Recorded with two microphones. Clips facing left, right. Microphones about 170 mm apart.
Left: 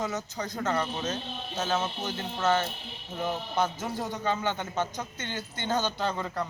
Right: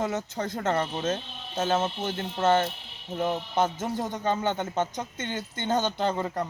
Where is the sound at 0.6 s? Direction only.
25° right (ahead or behind).